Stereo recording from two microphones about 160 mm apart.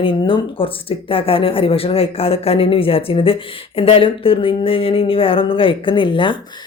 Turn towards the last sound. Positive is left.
turn(degrees=30)  # may be behind; listen again after turning